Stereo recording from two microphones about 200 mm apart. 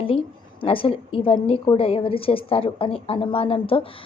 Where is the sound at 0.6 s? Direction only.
25° left (ahead or behind).